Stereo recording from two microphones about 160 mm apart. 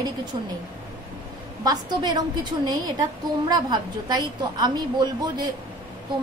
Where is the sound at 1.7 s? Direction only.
25° right (ahead or behind).